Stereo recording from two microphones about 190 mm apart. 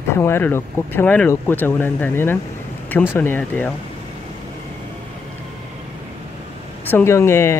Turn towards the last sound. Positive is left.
turn(degrees=15)  # may be behind; listen again after turning